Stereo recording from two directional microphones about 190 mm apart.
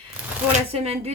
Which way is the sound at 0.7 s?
35° right (ahead or behind).